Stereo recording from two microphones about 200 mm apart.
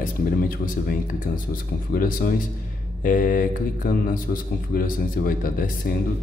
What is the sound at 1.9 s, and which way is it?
Speech, 45° left (ahead or behind).